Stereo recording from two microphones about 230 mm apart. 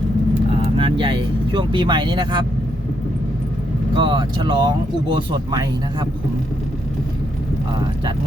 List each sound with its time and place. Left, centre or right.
0.5 s speech: right
3.9 s speech: right